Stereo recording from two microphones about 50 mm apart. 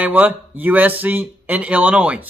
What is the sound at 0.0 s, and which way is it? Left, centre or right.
Speech, right.